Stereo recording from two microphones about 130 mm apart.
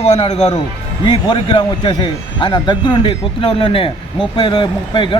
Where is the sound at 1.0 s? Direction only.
40° left (ahead or behind).